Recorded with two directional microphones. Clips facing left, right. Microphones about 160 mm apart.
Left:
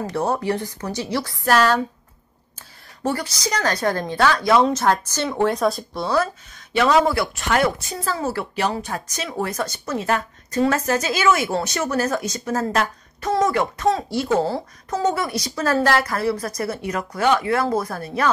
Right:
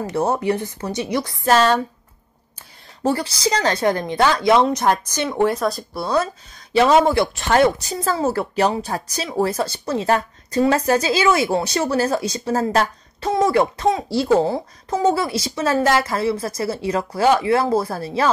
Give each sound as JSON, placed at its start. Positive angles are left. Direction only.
{"t": 0.0, "sound": "speech", "side_deg": -25}
{"t": 3.0, "sound": "a woman's voice", "side_deg": -30}
{"t": 5.5, "sound": "speech", "side_deg": 0}
{"t": 6.7, "sound": "speech", "side_deg": -25}
{"t": 8.3, "sound": "a woman's voice", "side_deg": -40}
{"t": 14.4, "sound": "speech", "side_deg": -20}